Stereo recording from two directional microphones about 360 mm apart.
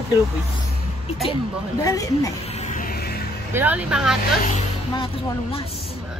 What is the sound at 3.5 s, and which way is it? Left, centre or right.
Speech, centre.